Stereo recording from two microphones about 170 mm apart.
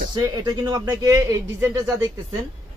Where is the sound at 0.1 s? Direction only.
25° right (ahead or behind).